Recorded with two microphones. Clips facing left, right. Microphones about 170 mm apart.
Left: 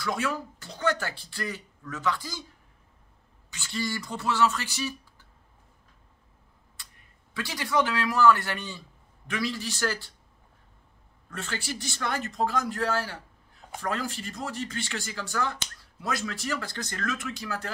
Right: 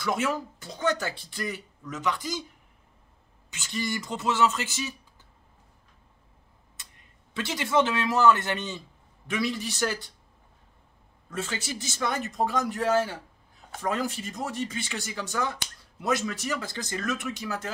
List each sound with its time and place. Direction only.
0.0 s speech: 20° right (ahead or behind)
3.4 s speech: 20° right (ahead or behind)
6.8 s a sound: 20° right (ahead or behind)
7.3 s speech: 25° right (ahead or behind)
11.2 s speech: 20° right (ahead or behind)